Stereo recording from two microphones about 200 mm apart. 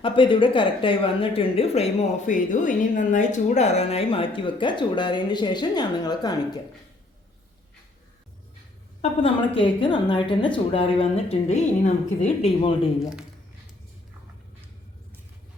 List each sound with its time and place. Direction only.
0.0 s speech: 25° left (ahead or behind)
9.0 s speech: 25° left (ahead or behind)